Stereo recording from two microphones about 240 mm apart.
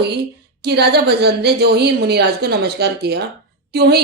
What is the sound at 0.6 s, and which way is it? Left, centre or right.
A woman's voice, right.